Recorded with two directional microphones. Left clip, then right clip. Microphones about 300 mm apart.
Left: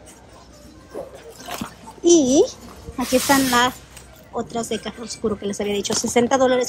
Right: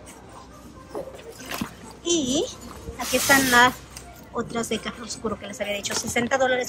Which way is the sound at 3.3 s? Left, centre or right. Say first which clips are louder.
Right 3 dB; centre.